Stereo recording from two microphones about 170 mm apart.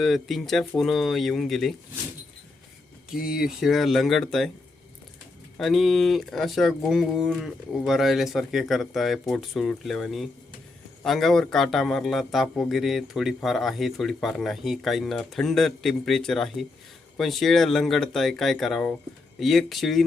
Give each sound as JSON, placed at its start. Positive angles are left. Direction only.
{"t": 0.0, "sound": "a man's voice", "side_deg": 0}
{"t": 3.1, "sound": "a man's voice", "side_deg": -5}
{"t": 5.5, "sound": "a man's voice", "side_deg": 0}